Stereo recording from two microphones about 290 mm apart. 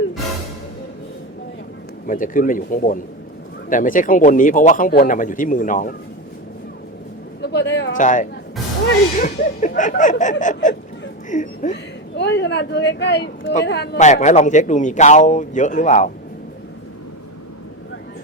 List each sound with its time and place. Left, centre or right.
2.0 s speech: left
7.4 s a man's voice: left